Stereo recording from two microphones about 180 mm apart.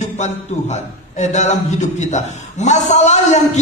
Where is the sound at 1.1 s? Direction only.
40° left (ahead or behind).